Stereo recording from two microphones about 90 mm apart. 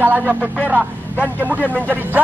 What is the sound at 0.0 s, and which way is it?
Speech, 20° right (ahead or behind).